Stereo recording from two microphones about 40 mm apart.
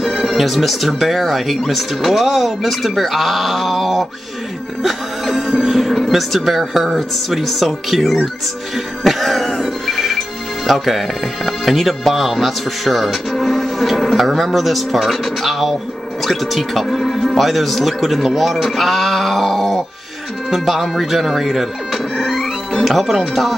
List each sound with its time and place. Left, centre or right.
0.0 s speech: centre
4.8 s music: centre
5.5 s speech: centre
8.7 s music: centre
10.7 s speech: centre